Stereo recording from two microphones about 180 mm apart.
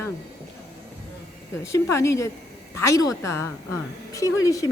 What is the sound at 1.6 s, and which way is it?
A woman's voice, 15° left (ahead or behind).